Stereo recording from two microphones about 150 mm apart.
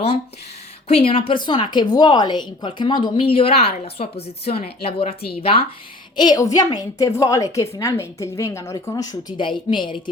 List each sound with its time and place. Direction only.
0.9 s a woman's voice: 40° left (ahead or behind)
6.1 s a woman's voice: 25° left (ahead or behind)